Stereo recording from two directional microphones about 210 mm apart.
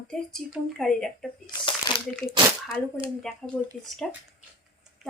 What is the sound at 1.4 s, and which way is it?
Speech, 20° left (ahead or behind).